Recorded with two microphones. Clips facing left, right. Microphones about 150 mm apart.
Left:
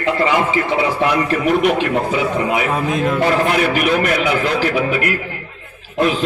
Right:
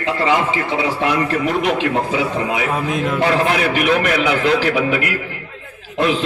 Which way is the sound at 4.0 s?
45° left (ahead or behind).